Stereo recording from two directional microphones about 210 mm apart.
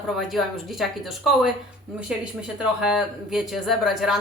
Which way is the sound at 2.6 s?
5° right (ahead or behind).